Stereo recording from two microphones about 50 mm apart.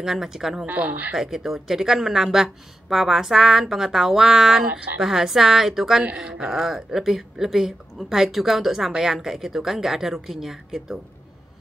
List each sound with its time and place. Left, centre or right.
0.0 s speech: centre
0.7 s speech: right
1.1 s speech: centre
4.6 s a woman's voice: right
4.9 s speech: centre